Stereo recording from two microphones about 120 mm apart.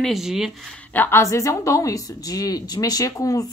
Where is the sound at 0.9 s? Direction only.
20° left (ahead or behind).